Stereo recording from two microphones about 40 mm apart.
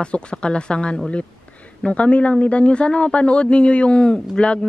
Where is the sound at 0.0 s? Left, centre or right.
Left.